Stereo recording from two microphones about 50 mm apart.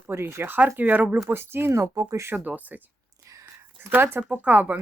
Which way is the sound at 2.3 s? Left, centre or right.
Right.